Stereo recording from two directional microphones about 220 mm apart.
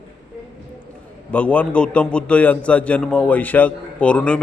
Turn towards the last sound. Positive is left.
turn(degrees=5)  # may be behind; listen again after turning